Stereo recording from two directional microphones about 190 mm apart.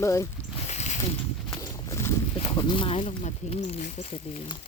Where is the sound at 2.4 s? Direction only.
30° left (ahead or behind).